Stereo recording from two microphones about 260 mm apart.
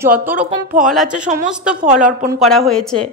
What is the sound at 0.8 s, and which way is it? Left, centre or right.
Speech, centre.